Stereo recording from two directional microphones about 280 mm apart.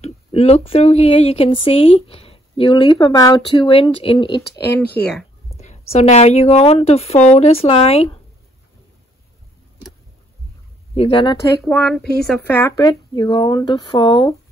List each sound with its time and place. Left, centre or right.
0.0 s speech: left
4.7 s speech: centre
5.5 s speech: left
11.0 s speech: centre
11.6 s speech: centre